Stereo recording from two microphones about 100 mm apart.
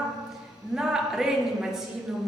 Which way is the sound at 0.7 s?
5° right (ahead or behind).